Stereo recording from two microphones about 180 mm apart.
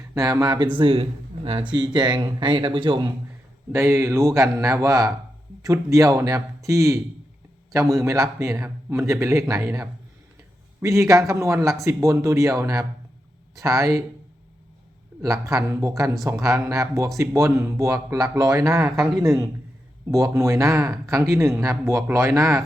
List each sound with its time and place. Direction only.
0.1 s speech: 20° right (ahead or behind)
3.7 s speech: 15° right (ahead or behind)
15.2 s speech: 20° right (ahead or behind)